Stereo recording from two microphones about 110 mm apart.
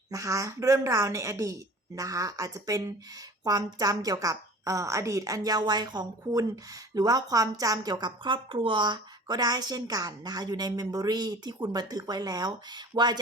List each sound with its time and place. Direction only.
0.1 s a woman's voice: 30° right (ahead or behind)